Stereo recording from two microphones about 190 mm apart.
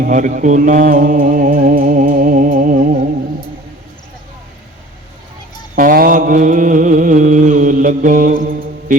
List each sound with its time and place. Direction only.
0.0 s music: 45° right (ahead or behind)
5.7 s music: 50° right (ahead or behind)